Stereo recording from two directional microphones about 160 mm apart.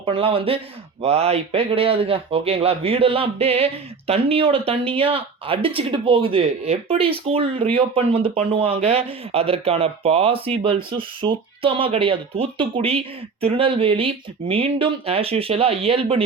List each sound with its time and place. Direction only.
0.0 s speech: 35° right (ahead or behind)